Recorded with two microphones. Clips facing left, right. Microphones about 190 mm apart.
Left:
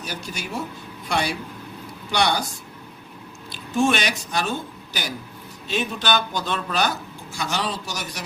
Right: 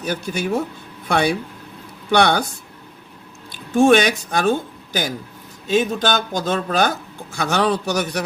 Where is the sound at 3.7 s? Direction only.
55° right (ahead or behind).